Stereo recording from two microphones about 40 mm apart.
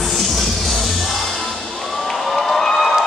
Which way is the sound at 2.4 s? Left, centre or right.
Centre.